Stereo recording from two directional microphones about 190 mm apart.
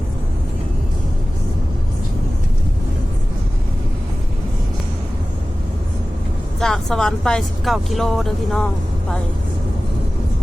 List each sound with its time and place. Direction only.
6.6 s speech: 5° left (ahead or behind)